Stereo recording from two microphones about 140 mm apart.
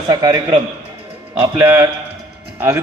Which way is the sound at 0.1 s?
25° right (ahead or behind).